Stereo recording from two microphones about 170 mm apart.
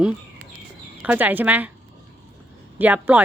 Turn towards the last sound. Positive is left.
turn(degrees=-10)  # may be behind; listen again after turning